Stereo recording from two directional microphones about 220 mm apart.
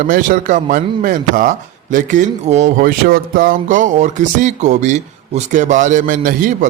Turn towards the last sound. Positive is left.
turn(degrees=-35)  # may be behind; listen again after turning